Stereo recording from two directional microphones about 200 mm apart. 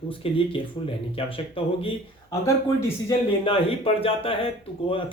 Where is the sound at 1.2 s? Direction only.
25° left (ahead or behind).